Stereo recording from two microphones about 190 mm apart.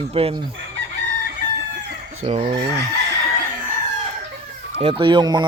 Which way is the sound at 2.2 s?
30° right (ahead or behind).